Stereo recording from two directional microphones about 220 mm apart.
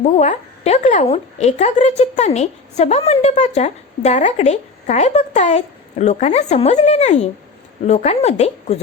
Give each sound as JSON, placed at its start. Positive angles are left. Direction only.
{"t": 0.0, "sound": "a woman's voice", "side_deg": 30}